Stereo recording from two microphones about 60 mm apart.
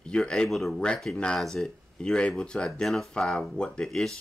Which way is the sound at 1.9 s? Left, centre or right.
Centre.